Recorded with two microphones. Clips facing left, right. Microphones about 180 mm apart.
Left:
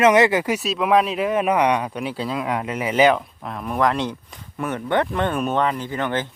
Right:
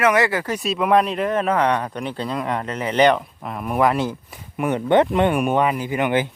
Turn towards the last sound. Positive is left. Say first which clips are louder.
# right 4 dB
turn(degrees=-15)  # may be behind; listen again after turning